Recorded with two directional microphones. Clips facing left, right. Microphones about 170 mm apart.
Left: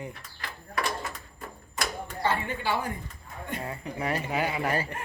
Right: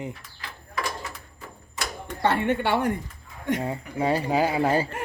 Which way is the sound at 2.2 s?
70° right (ahead or behind).